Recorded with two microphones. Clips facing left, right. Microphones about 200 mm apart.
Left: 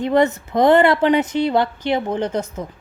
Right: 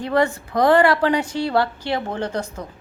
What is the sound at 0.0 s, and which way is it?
A woman's voice, 20° left (ahead or behind).